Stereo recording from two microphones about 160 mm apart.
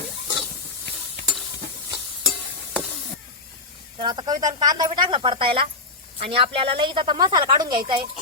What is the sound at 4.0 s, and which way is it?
Speech, 30° right (ahead or behind).